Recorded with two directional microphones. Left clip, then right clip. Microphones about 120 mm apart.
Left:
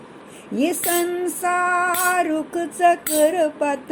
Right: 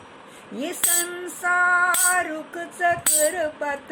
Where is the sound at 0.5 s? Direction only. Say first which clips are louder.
Left 9 dB; 40° left (ahead or behind).